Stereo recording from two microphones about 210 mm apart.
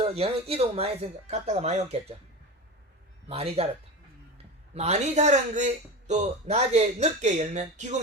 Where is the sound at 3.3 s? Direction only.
30° right (ahead or behind).